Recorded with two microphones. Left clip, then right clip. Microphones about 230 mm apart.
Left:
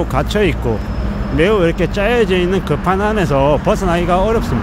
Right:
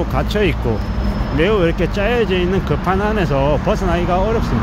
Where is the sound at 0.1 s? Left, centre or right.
Centre.